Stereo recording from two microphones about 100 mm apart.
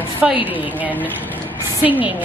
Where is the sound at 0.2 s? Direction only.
10° right (ahead or behind).